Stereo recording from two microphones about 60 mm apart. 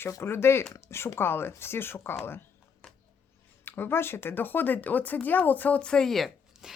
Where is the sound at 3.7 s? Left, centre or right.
Left.